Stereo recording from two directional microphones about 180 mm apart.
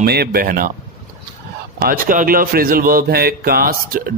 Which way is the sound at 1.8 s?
50° right (ahead or behind).